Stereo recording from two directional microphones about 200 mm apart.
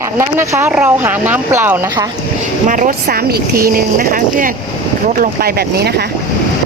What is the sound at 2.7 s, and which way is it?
Speech, 40° right (ahead or behind).